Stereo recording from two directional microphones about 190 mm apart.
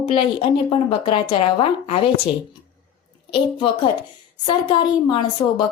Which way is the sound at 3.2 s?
30° left (ahead or behind).